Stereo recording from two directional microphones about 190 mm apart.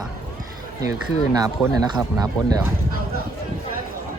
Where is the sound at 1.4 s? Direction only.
20° right (ahead or behind).